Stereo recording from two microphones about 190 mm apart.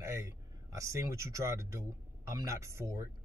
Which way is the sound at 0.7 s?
15° right (ahead or behind).